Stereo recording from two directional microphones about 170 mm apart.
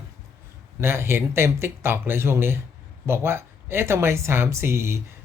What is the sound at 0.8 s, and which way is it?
Speech, 15° right (ahead or behind).